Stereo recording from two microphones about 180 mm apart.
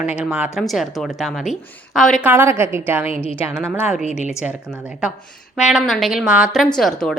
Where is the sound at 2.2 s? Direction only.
10° right (ahead or behind).